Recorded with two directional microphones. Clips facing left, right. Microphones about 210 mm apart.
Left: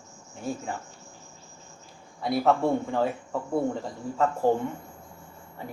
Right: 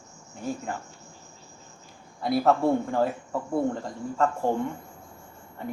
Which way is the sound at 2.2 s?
Centre (ahead or behind).